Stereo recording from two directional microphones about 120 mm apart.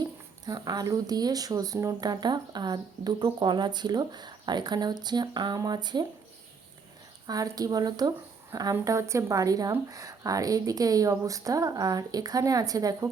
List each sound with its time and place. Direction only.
0.4 s speech: 35° right (ahead or behind)
7.3 s speech: 30° right (ahead or behind)